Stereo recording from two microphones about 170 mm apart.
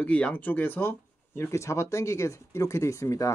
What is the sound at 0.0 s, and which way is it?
Speech, 5° left (ahead or behind).